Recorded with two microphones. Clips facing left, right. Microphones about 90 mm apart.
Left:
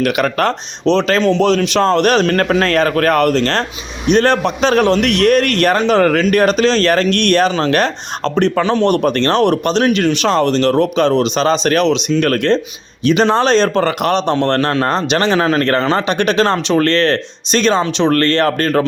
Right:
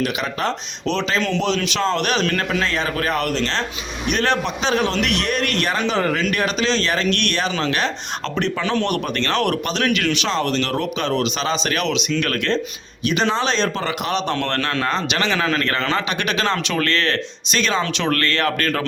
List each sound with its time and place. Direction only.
0.0 s speech: 60° left (ahead or behind)
1.4 s a man's voice: 45° left (ahead or behind)
14.8 s speech: 40° left (ahead or behind)